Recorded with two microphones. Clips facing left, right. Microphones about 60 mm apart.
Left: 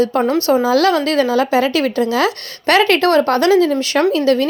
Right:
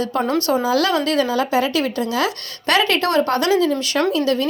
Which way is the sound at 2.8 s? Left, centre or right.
Left.